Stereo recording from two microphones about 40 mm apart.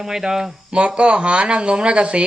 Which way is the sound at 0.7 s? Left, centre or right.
Right.